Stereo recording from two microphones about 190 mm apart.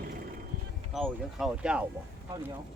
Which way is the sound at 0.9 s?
Centre (ahead or behind).